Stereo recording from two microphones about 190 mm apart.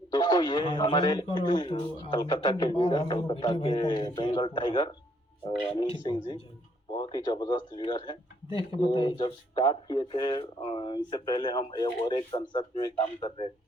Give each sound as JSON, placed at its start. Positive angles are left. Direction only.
{"t": 0.3, "sound": "speech", "side_deg": 20}